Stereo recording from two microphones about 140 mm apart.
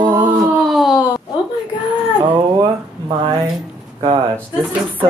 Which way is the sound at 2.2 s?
30° right (ahead or behind).